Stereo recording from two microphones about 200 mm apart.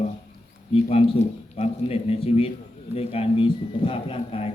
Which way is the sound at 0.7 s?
30° left (ahead or behind).